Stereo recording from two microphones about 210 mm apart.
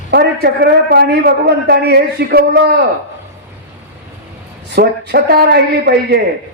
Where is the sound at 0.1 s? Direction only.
50° right (ahead or behind).